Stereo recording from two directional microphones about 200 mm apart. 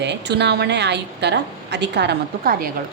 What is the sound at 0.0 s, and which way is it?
A woman's voice, 60° right (ahead or behind).